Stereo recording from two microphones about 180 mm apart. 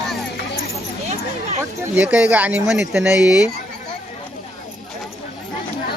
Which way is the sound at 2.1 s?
5° right (ahead or behind).